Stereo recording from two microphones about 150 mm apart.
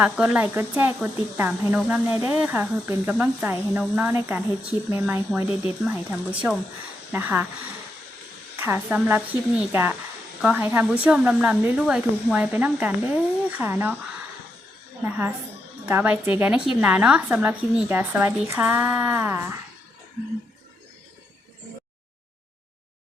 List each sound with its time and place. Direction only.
0.0 s speech: 10° right (ahead or behind)
8.5 s speech: 15° right (ahead or behind)
15.0 s speech: 15° right (ahead or behind)